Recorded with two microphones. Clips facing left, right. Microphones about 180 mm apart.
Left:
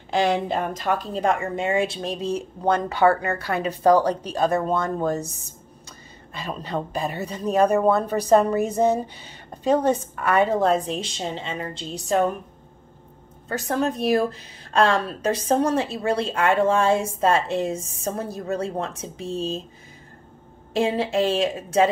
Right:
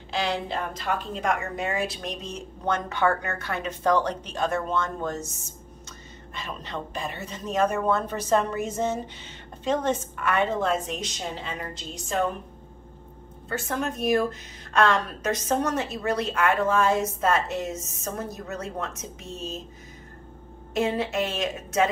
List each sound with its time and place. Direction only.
0.1 s speech: 50° left (ahead or behind)
13.5 s speech: 35° left (ahead or behind)
20.7 s speech: 30° left (ahead or behind)